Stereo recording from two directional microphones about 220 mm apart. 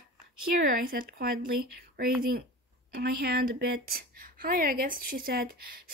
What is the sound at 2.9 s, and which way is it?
Speech, 45° right (ahead or behind).